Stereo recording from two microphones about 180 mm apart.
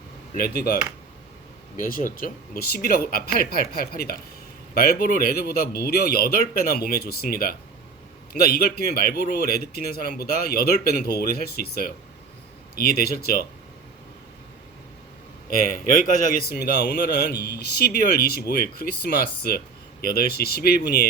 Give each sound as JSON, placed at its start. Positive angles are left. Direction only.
{"t": 0.3, "sound": "a man's voice", "side_deg": 55}
{"t": 15.4, "sound": "a man's voice", "side_deg": 50}